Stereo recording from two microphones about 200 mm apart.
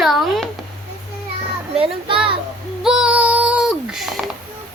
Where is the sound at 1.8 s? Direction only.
25° right (ahead or behind).